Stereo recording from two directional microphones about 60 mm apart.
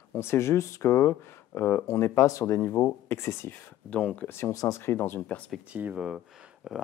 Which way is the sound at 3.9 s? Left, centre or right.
Centre.